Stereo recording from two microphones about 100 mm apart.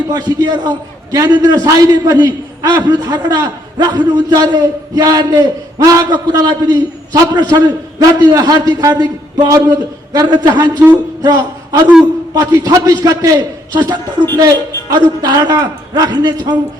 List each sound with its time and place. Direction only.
0.1 s a man's voice: 45° right (ahead or behind)
11.2 s a sound: 45° right (ahead or behind)
12.3 s a man's voice: 40° right (ahead or behind)